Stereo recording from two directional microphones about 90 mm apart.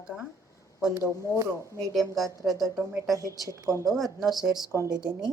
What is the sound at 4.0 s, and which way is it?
Speech, centre (ahead or behind).